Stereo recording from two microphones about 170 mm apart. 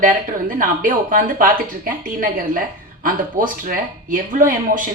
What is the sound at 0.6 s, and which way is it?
A woman's voice, 55° right (ahead or behind).